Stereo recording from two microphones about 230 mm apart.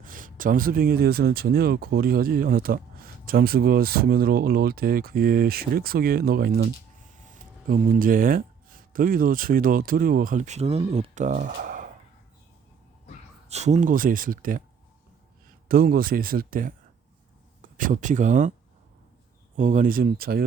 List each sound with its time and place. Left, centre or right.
0.0 s speech: right
7.7 s speech: right
13.5 s speech: right
15.7 s speech: right
19.5 s speech: right